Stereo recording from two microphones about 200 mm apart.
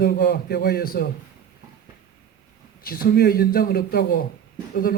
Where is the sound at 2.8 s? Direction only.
45° left (ahead or behind).